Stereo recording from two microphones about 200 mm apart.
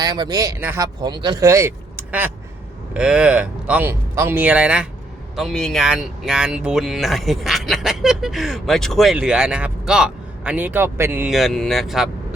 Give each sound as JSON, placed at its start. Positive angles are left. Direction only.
{"t": 0.0, "sound": "speech", "side_deg": -20}